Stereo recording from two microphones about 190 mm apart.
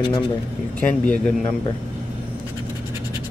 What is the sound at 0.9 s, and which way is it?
Speech, 10° left (ahead or behind).